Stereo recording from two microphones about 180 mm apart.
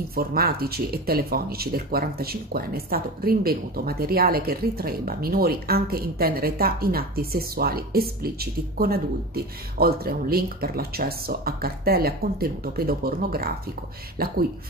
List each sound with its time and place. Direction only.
0.1 s speech: 55° right (ahead or behind)